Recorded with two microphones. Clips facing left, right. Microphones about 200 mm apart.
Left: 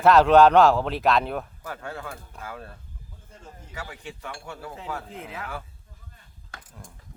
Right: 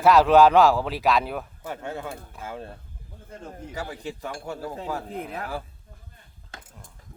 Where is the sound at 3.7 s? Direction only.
35° right (ahead or behind).